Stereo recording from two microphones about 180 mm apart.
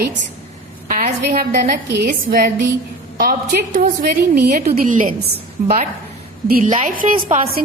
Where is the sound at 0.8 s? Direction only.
45° right (ahead or behind).